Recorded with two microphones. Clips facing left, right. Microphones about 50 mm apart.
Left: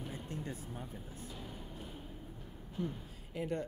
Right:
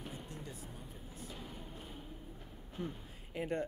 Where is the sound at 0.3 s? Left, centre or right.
Left.